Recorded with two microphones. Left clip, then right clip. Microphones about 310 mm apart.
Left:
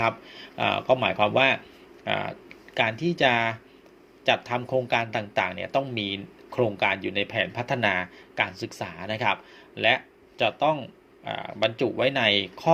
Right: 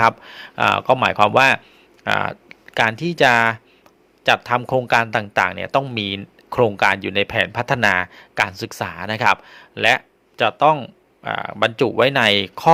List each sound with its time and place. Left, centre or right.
0.0 s a man's voice: right